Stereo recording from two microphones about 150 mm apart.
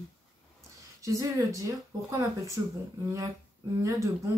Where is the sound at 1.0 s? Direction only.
20° right (ahead or behind).